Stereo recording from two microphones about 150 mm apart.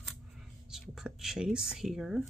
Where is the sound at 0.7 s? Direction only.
5° right (ahead or behind).